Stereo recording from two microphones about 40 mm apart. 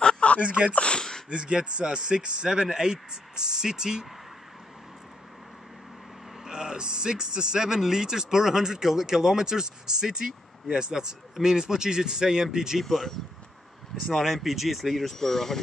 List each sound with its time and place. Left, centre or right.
0.4 s speech: right
0.7 s speech: left
1.3 s speech: right
6.4 s speech: centre
12.8 s speech: centre